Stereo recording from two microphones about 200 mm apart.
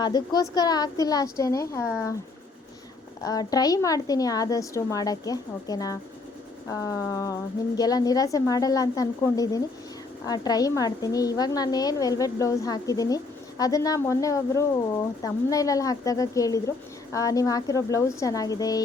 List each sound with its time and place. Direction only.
0.0 s a woman's voice: 20° left (ahead or behind)
3.2 s a woman's voice: 20° left (ahead or behind)